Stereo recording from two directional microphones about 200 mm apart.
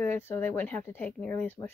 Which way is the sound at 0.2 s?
10° left (ahead or behind).